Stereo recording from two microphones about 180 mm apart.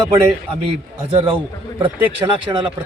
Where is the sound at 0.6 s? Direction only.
30° right (ahead or behind).